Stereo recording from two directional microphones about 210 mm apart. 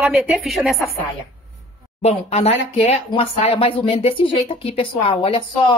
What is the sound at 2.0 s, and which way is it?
Speech, 30° left (ahead or behind).